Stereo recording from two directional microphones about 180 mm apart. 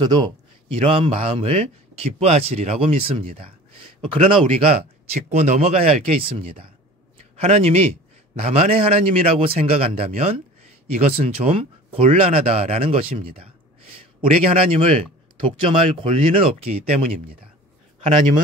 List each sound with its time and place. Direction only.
0.0 s speech: 25° right (ahead or behind)